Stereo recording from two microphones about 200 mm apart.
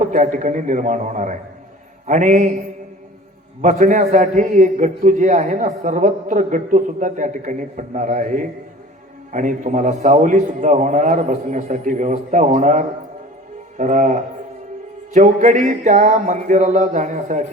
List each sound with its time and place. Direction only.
0.0 s a man's voice: 40° right (ahead or behind)
3.6 s a man's voice: 40° right (ahead or behind)